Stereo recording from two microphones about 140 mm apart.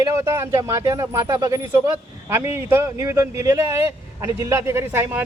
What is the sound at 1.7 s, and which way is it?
Speech, 15° right (ahead or behind).